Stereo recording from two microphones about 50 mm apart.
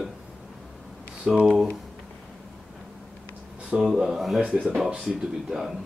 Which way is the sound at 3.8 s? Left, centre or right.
Centre.